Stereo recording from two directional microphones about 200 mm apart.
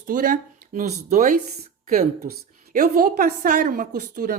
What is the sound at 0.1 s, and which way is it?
A woman's voice, 45° right (ahead or behind).